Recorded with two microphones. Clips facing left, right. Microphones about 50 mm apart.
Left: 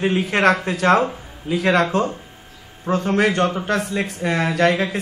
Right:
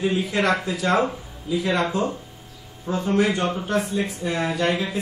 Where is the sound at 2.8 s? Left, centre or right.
Left.